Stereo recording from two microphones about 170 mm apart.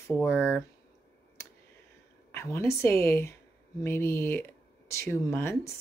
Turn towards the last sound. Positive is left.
turn(degrees=15)  # may be behind; listen again after turning